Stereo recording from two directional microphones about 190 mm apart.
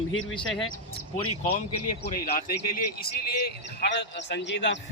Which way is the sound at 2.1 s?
50° left (ahead or behind).